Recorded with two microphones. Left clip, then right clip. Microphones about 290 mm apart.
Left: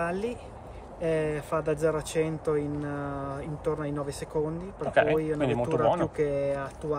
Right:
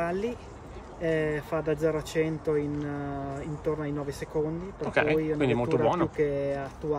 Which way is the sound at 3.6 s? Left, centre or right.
Left.